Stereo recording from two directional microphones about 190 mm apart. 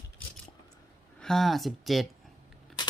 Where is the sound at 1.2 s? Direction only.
Centre (ahead or behind).